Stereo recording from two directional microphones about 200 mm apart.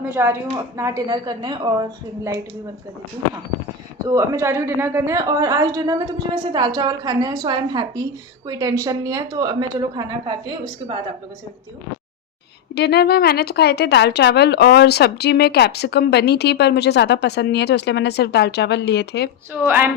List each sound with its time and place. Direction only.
0.1 s a woman's voice: 10° right (ahead or behind)
4.0 s a woman's voice: 15° right (ahead or behind)
12.7 s speech: 55° left (ahead or behind)
19.6 s a woman's voice: 10° right (ahead or behind)